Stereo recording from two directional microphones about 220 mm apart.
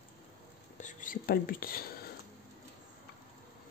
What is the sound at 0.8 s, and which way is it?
Speech, 40° left (ahead or behind).